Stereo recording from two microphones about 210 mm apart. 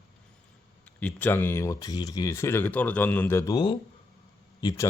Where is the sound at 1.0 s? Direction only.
5° left (ahead or behind).